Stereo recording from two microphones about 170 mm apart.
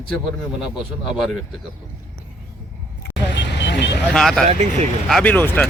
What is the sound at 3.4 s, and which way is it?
Vehicle, 90° left.